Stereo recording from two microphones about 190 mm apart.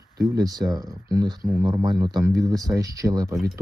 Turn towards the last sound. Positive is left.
turn(degrees=-20)  # may be behind; listen again after turning